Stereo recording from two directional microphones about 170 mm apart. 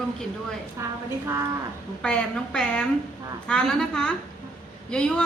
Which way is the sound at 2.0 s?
5° left (ahead or behind).